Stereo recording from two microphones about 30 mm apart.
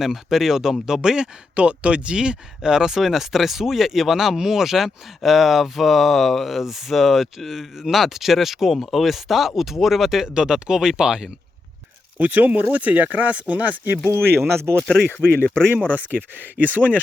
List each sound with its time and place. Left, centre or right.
0.0 s speech: centre
1.5 s speech: right
3.0 s speech: centre
7.4 s chopping: centre
7.8 s speech: centre
8.8 s chopping: centre
9.6 s speech: centre
10.2 s speech: right
12.2 s speech: right
14.4 s speech: centre
15.4 s speech: left
16.1 s speech: right